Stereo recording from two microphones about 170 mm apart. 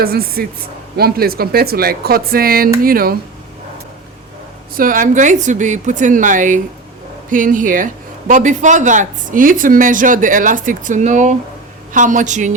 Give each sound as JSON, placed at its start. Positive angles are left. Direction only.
{"t": 0.0, "sound": "speech", "side_deg": -60}
{"t": 4.8, "sound": "speech", "side_deg": -50}